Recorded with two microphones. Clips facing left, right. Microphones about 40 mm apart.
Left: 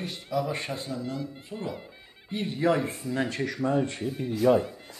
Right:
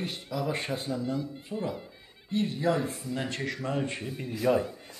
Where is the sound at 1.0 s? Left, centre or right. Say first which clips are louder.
Right 2 dB; centre.